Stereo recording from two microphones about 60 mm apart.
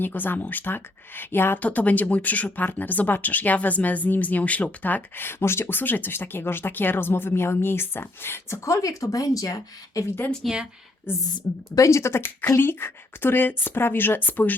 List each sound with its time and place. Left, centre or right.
0.0 s speech: left
1.5 s speech: left
8.6 s speech: left
10.4 s speech: centre
11.7 s speech: left